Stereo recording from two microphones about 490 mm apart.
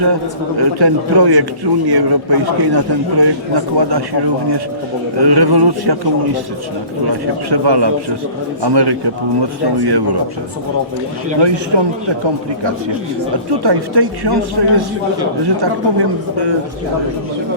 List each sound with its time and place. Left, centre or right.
0.6 s a man's voice: right
7.1 s a man's voice: right
11.3 s a man's voice: right
13.5 s a man's voice: right